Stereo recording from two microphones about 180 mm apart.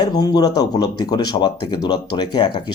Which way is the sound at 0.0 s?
20° left (ahead or behind).